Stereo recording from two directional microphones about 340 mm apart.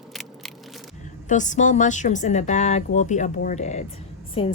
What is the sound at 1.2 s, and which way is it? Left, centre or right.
A woman's voice, left.